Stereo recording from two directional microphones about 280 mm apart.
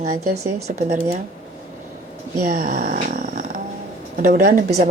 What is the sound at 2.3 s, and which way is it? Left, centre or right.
Speech, right.